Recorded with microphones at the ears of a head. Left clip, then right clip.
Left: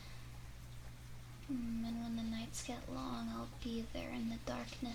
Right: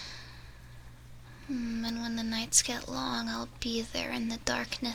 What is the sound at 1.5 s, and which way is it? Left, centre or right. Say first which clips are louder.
Speech: right 8 dB; right.